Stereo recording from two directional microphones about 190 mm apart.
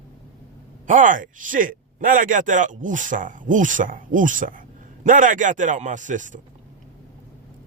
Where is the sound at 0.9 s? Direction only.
45° right (ahead or behind).